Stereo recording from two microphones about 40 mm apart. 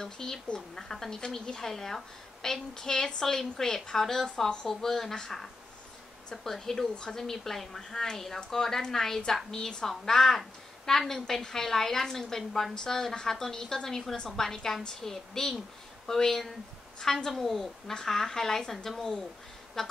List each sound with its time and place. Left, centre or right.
0.0 s a woman's voice: centre